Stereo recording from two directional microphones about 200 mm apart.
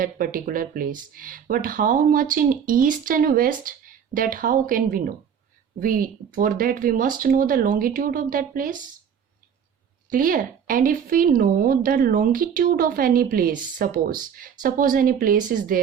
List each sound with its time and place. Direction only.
0.0 s speech: 45° right (ahead or behind)
10.1 s speech: 45° right (ahead or behind)